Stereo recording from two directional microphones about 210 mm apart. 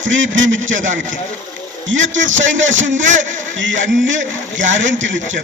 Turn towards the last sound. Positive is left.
turn(degrees=-65)  # may be behind; listen again after turning